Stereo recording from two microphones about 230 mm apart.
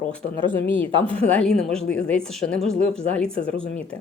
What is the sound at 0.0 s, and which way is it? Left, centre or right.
Speech, centre.